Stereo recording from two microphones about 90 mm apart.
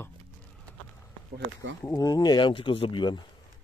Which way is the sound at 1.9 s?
50° left (ahead or behind).